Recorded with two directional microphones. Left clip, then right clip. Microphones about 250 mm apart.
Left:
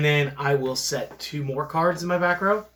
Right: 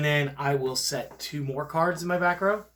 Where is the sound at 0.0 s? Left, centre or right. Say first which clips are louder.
Left 3 dB; right.